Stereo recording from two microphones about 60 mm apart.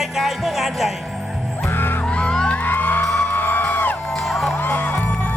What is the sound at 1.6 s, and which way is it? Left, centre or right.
Music, left.